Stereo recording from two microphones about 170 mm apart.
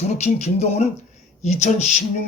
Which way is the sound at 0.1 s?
40° left (ahead or behind).